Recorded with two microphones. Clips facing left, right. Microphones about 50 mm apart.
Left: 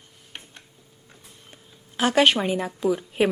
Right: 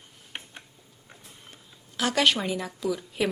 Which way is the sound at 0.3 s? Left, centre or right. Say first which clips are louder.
Right 2 dB; centre.